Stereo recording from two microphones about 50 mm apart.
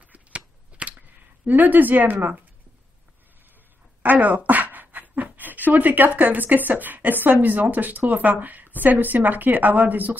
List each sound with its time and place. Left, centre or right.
0.1 s a sound: right
1.5 s a woman's voice: right
4.0 s a woman's voice: right